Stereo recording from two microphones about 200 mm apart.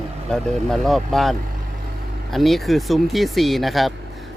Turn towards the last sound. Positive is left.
turn(degrees=0)  # may be behind; listen again after turning